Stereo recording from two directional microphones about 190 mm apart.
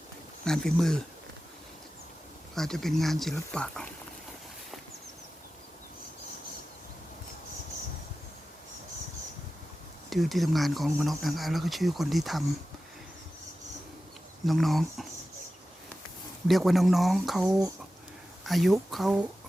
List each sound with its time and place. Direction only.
0.4 s speech: centre (ahead or behind)
2.6 s speech: centre (ahead or behind)
10.1 s speech: centre (ahead or behind)
14.4 s speech: centre (ahead or behind)
16.5 s speech: centre (ahead or behind)